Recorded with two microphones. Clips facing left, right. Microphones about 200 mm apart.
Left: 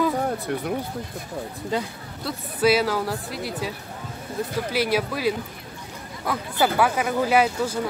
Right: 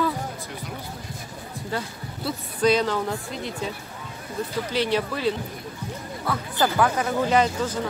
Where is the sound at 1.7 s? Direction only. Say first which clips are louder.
Left 4 dB; 15° left (ahead or behind).